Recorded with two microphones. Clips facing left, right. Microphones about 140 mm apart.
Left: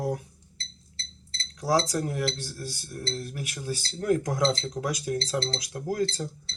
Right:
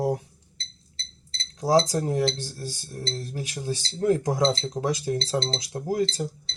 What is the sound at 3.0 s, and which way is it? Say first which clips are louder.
Speech: right 2 dB; 30° right (ahead or behind).